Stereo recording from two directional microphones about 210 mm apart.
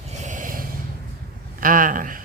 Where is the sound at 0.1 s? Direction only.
35° right (ahead or behind).